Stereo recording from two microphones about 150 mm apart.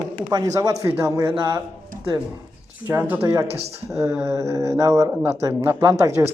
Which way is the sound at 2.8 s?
15° right (ahead or behind).